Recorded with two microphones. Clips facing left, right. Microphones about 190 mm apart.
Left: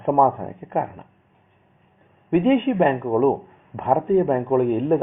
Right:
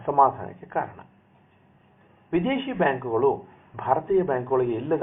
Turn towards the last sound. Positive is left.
turn(degrees=15)  # may be behind; listen again after turning